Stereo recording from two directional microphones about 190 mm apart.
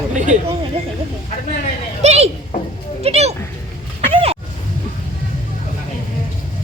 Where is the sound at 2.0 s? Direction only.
35° right (ahead or behind).